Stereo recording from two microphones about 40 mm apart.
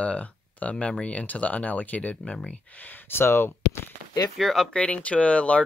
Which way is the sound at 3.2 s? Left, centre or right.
Left.